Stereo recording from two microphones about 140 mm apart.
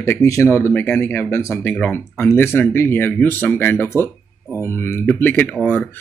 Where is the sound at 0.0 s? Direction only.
20° left (ahead or behind).